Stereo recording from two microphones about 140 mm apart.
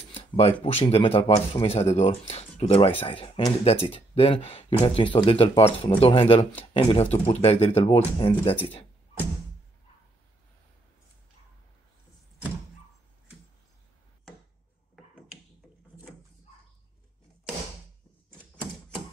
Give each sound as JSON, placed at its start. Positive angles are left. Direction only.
{"t": 0.1, "sound": "speech", "side_deg": 45}